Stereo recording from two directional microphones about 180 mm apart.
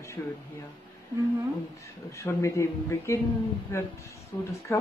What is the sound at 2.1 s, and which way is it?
A man's voice, 15° left (ahead or behind).